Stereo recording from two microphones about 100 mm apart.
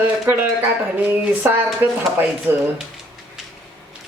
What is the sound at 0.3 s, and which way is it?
Speech, 15° right (ahead or behind).